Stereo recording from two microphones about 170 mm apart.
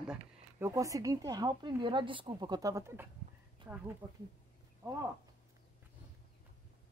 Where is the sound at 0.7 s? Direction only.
20° right (ahead or behind).